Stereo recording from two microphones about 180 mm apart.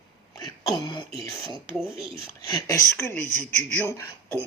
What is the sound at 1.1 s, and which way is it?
Speech, 30° right (ahead or behind).